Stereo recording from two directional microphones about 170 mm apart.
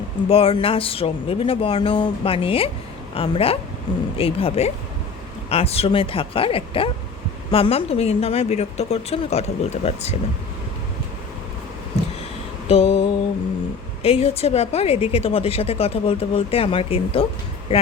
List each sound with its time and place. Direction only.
0.3 s a woman's voice: 35° left (ahead or behind)
12.6 s mantra: 35° left (ahead or behind)
14.0 s a woman's voice: 35° left (ahead or behind)